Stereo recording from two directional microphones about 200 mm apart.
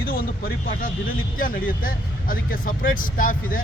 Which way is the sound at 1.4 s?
45° left (ahead or behind).